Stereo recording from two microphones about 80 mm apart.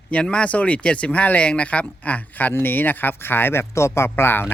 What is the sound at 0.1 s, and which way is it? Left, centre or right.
A man's voice, centre.